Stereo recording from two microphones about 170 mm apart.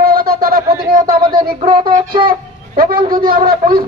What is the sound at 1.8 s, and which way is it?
Speech, 55° right (ahead or behind).